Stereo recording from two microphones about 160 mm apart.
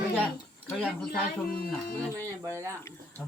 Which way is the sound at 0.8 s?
5° left (ahead or behind).